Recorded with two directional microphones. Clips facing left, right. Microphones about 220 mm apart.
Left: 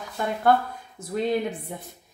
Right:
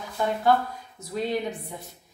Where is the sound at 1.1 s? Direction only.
55° left (ahead or behind).